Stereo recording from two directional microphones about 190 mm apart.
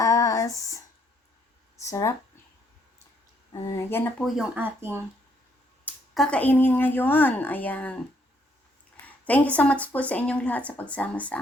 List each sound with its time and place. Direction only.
0.0 s a sound: 15° left (ahead or behind)
1.8 s speech: 15° left (ahead or behind)
3.5 s speech: 10° left (ahead or behind)
4.2 s speech: centre (ahead or behind)
5.8 s speech: 5° left (ahead or behind)
9.0 s speech: 10° left (ahead or behind)